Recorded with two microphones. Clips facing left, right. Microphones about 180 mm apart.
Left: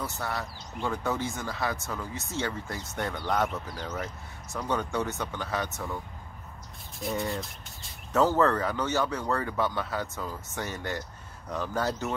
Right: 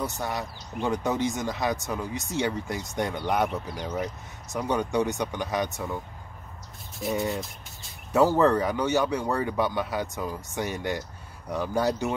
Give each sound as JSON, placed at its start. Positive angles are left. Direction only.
{"t": 0.0, "sound": "speech", "side_deg": -15}
{"t": 7.0, "sound": "speech", "side_deg": 0}
{"t": 8.1, "sound": "speech", "side_deg": -15}